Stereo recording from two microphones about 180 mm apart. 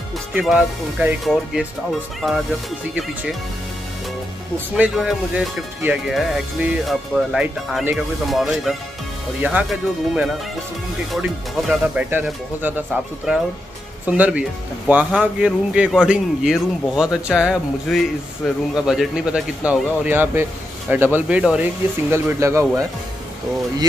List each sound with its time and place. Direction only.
0.3 s speech: 5° right (ahead or behind)
4.7 s speech: 5° right (ahead or behind)